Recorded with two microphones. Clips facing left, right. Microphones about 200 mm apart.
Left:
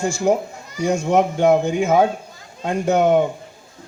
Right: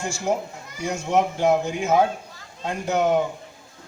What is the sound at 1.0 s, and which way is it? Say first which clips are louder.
A man's voice: left 3 dB; 50° left (ahead or behind).